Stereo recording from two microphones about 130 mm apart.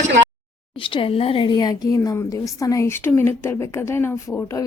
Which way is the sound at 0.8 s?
45° left (ahead or behind).